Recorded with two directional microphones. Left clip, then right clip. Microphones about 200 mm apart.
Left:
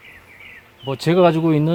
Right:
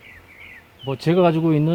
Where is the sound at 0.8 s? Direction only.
20° left (ahead or behind).